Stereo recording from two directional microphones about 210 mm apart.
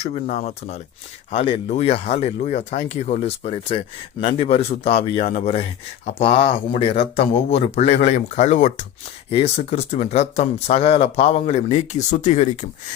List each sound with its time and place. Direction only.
0.0 s speech: 30° left (ahead or behind)